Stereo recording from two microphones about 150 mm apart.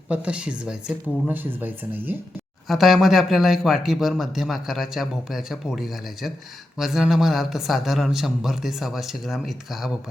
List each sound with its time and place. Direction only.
0.1 s speech: 10° right (ahead or behind)
2.6 s speech: centre (ahead or behind)